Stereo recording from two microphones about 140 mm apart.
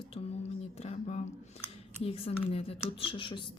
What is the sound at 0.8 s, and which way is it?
Speech, 50° left (ahead or behind).